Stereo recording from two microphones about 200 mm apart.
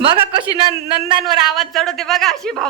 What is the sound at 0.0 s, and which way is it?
Speech, 25° right (ahead or behind).